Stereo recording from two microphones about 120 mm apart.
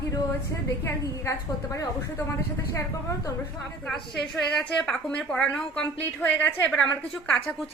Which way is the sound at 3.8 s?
5° left (ahead or behind).